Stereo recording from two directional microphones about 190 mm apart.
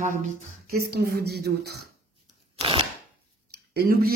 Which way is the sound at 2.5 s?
30° right (ahead or behind).